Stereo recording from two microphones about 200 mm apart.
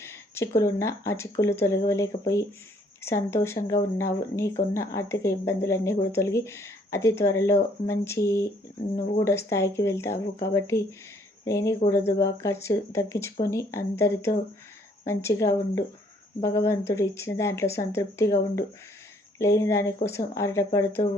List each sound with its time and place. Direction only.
0.0 s speech: 15° left (ahead or behind)